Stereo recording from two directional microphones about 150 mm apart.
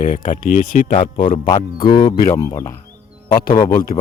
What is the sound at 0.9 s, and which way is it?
Speech, 35° left (ahead or behind).